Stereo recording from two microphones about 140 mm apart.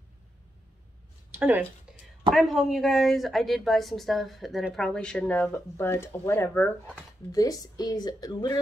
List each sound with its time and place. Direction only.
1.3 s speech: 10° right (ahead or behind)
2.3 s a woman's voice: centre (ahead or behind)
7.3 s speech: 25° left (ahead or behind)